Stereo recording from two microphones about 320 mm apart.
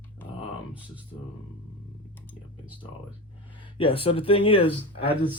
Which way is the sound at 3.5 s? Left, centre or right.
Centre.